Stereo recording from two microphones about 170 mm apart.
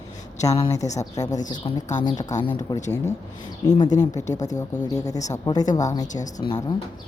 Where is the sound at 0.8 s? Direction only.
45° left (ahead or behind).